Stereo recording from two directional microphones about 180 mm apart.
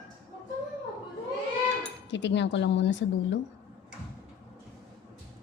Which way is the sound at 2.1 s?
80° left.